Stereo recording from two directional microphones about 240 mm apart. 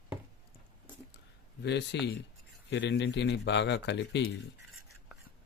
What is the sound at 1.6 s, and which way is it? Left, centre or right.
Speech, left.